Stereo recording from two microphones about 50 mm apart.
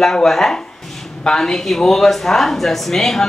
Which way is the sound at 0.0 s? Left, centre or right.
Centre.